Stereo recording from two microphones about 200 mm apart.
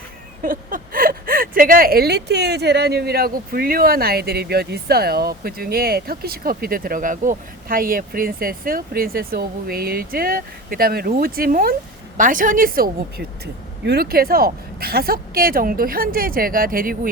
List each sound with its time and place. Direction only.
0.4 s speech: 45° right (ahead or behind)